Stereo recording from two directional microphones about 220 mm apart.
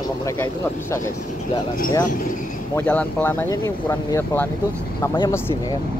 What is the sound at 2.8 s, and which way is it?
Speech, 10° left (ahead or behind).